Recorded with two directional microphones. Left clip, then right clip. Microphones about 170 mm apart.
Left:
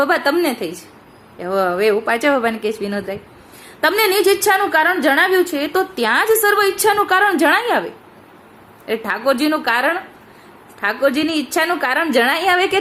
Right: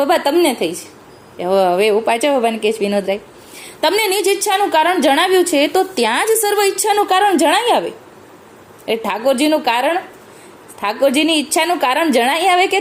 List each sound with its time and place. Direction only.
0.0 s a woman's voice: 10° right (ahead or behind)
9.0 s a woman's voice: 10° right (ahead or behind)